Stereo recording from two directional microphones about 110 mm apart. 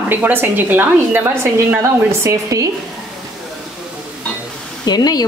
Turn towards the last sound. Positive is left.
turn(degrees=35)  # may be behind; listen again after turning